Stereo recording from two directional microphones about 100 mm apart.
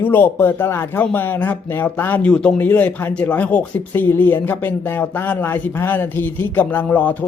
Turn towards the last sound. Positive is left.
turn(degrees=15)  # may be behind; listen again after turning